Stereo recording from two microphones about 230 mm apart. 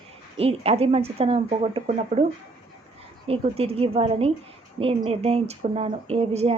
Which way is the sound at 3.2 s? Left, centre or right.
Right.